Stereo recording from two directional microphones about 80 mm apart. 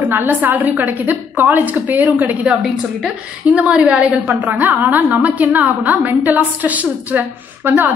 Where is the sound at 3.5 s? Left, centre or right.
Centre.